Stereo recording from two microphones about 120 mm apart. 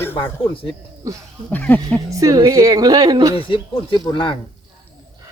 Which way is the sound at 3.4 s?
45° left (ahead or behind).